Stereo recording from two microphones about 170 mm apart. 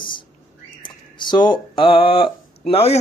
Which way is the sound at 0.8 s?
25° left (ahead or behind).